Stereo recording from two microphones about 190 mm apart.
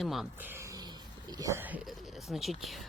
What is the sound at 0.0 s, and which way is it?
Speech, centre (ahead or behind).